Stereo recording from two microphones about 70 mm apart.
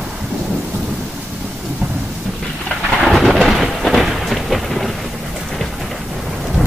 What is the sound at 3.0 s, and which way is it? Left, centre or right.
Thunder, centre.